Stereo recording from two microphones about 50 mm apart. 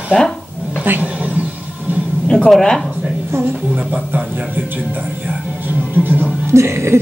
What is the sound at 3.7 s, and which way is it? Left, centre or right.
Speech, right.